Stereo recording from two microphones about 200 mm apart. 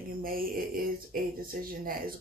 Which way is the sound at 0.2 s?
45° right (ahead or behind).